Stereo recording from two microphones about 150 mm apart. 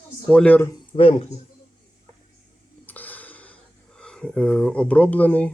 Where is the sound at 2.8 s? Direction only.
10° left (ahead or behind).